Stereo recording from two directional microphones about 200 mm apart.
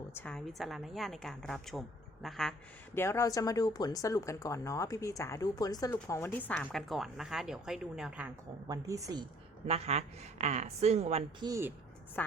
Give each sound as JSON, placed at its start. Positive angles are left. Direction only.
{"t": 0.2, "sound": "a woman's voice", "side_deg": 5}
{"t": 8.6, "sound": "a woman's voice", "side_deg": -15}
{"t": 9.6, "sound": "a woman's voice", "side_deg": -30}
{"t": 11.4, "sound": "a woman's voice", "side_deg": -15}